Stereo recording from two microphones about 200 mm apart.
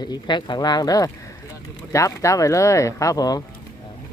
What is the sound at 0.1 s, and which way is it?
Speech, 20° left (ahead or behind).